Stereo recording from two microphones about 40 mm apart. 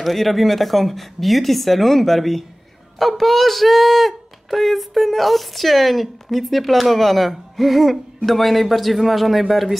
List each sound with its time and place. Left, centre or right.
0.0 s speech: centre